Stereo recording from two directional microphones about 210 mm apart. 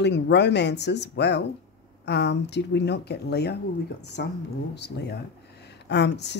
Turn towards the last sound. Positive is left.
turn(degrees=55)  # may be behind; listen again after turning